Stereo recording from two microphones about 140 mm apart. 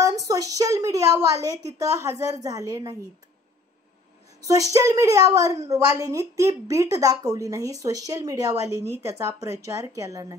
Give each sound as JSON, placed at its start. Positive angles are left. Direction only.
{"t": 0.0, "sound": "a woman's voice", "side_deg": -25}
{"t": 4.7, "sound": "a woman's voice", "side_deg": -25}